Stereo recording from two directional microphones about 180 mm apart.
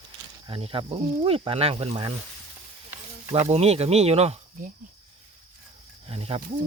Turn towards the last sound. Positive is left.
turn(degrees=-35)  # may be behind; listen again after turning